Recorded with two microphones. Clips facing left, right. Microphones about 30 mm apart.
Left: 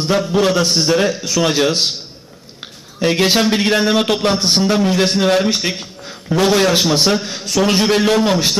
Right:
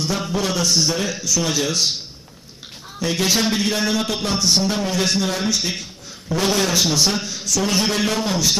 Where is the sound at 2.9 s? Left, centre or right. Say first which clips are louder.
Left 6 dB; left.